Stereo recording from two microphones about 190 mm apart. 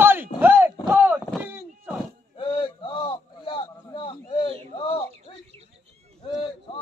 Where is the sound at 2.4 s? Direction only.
30° left (ahead or behind).